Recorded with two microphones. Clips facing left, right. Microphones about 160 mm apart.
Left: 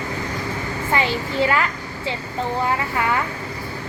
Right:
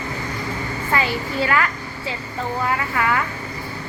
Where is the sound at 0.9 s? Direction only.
20° left (ahead or behind).